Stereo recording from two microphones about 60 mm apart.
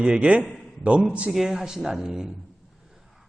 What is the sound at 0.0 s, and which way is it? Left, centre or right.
A man's voice, centre.